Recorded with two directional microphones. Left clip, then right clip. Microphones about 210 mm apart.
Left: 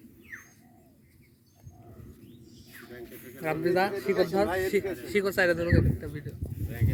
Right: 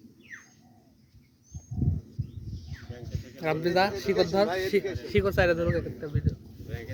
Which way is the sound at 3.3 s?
50° right (ahead or behind).